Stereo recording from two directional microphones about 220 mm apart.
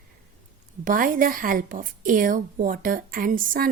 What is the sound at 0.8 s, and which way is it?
A woman's voice, 40° right (ahead or behind).